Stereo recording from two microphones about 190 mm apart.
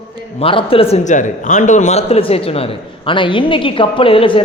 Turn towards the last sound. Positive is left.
turn(degrees=30)  # may be behind; listen again after turning